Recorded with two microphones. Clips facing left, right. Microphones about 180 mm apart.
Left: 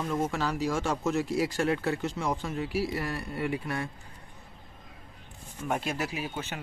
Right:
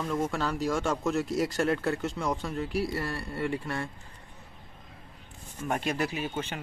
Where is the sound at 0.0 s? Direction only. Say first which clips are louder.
Even; centre (ahead or behind).